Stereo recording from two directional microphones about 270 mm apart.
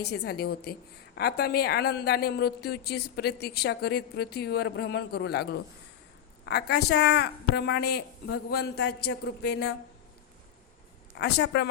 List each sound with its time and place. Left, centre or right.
0.0 s a woman's voice: left
11.2 s a woman's voice: left